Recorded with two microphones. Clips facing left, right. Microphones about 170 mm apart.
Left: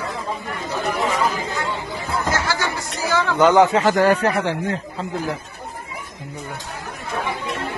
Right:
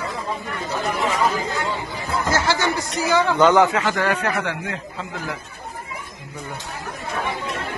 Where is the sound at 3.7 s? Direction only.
40° left (ahead or behind).